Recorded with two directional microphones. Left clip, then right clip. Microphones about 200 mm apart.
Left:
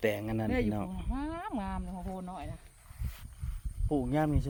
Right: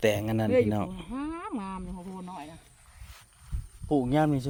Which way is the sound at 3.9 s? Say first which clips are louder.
Right 5 dB; 40° right (ahead or behind).